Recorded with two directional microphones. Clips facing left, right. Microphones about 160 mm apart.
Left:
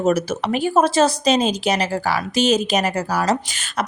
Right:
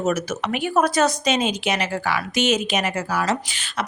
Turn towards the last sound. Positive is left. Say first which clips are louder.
# left 3 dB
turn(degrees=45)  # may be behind; listen again after turning